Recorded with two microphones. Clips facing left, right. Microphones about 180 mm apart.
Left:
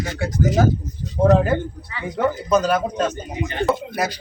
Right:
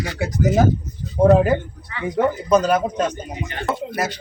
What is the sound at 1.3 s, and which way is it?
Speech, 5° right (ahead or behind).